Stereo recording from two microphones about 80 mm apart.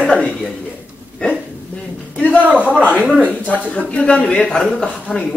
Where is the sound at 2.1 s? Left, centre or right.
Centre.